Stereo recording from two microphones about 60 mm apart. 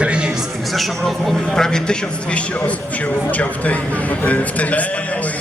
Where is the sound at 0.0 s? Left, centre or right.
Centre.